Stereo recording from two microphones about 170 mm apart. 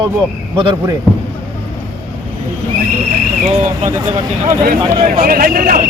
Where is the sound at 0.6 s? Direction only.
30° right (ahead or behind).